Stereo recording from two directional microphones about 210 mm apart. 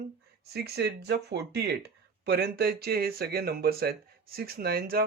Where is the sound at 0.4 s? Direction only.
50° right (ahead or behind).